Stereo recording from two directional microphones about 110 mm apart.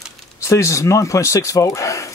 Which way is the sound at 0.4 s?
30° left (ahead or behind).